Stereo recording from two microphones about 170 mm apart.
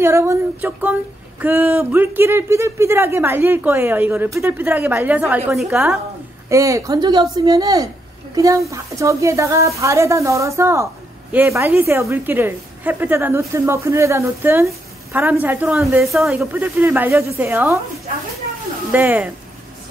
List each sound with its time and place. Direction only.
0.0 s speech: 15° right (ahead or behind)
6.5 s speech: 20° right (ahead or behind)
15.8 s a woman's voice: centre (ahead or behind)
18.9 s speech: 10° right (ahead or behind)